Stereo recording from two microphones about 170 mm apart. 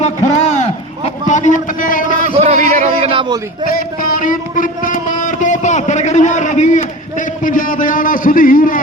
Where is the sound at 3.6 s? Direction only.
55° left (ahead or behind).